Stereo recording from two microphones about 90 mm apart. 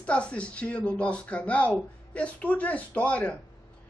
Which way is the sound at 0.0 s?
15° left (ahead or behind).